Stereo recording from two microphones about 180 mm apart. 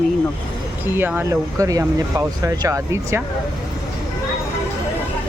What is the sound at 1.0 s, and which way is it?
Speech, 10° right (ahead or behind).